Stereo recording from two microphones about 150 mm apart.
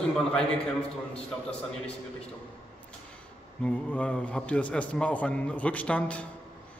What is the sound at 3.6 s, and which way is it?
A man's voice, 5° left (ahead or behind).